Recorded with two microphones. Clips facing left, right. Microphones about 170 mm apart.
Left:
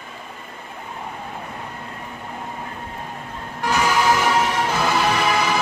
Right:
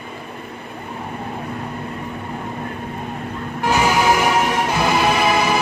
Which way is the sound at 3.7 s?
20° right (ahead or behind).